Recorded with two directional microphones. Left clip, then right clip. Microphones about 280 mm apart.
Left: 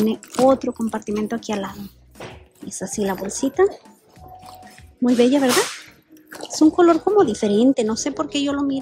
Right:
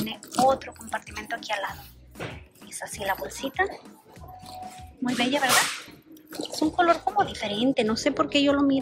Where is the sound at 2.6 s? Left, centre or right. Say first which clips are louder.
Left 5 dB; left.